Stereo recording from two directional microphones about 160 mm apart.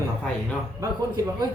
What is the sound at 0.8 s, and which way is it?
Speech, 20° right (ahead or behind).